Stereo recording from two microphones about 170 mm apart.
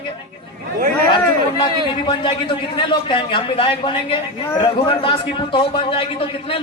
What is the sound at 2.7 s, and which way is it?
A woman's voice, 30° left (ahead or behind).